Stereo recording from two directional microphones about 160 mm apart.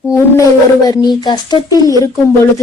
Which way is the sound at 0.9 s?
25° left (ahead or behind).